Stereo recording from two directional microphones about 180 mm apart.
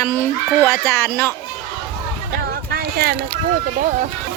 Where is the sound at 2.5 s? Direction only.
60° right (ahead or behind).